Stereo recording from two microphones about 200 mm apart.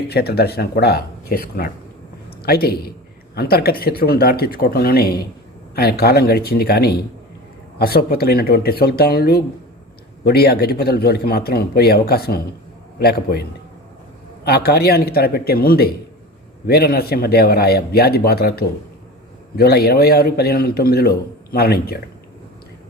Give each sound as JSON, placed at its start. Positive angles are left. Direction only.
{"t": 0.1, "sound": "a man's voice", "side_deg": 50}
{"t": 14.4, "sound": "a man's voice", "side_deg": 50}